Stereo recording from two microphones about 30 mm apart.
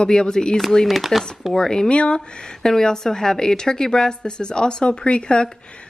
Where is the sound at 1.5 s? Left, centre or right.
Left.